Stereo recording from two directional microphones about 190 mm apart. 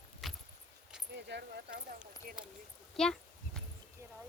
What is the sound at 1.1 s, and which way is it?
Speech, 60° right (ahead or behind).